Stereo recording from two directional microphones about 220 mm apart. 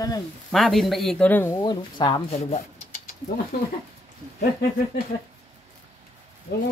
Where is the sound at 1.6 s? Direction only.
20° left (ahead or behind).